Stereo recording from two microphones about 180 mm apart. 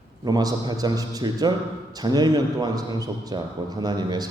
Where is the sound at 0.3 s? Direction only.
20° right (ahead or behind).